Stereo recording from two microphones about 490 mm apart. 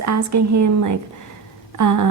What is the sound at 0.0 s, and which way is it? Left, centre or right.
A woman's voice, right.